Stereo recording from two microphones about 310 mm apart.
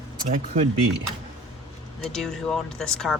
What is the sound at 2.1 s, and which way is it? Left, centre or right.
Speech, centre.